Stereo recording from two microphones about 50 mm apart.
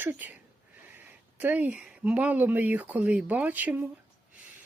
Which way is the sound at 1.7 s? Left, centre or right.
Right.